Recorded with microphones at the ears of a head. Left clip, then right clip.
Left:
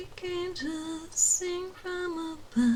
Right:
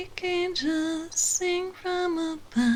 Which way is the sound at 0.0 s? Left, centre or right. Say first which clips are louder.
Right 6 dB; right.